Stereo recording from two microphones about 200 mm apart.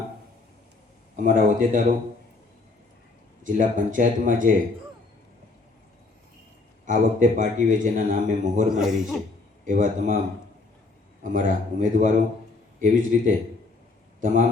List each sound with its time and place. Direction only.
1.1 s speech: 40° right (ahead or behind)
3.4 s speech: 40° right (ahead or behind)
6.8 s speech: 40° right (ahead or behind)
8.7 s a man's voice: 5° right (ahead or behind)
9.6 s speech: 40° right (ahead or behind)
11.2 s a man's voice: 40° right (ahead or behind)